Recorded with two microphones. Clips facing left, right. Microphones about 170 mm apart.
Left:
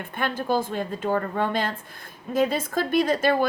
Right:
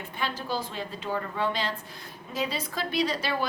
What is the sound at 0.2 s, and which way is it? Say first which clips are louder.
A woman's voice: left 7 dB; 55° left (ahead or behind).